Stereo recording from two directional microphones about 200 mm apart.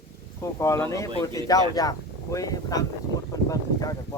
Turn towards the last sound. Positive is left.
turn(degrees=20)  # may be behind; listen again after turning